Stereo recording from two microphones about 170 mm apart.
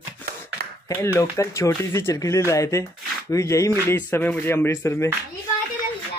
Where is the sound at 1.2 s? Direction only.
15° left (ahead or behind).